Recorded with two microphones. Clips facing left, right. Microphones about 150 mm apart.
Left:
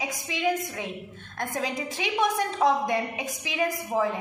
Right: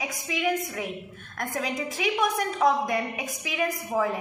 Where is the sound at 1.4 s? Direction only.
25° left (ahead or behind).